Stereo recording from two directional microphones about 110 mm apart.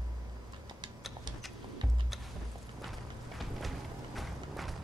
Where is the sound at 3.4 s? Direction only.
Centre (ahead or behind).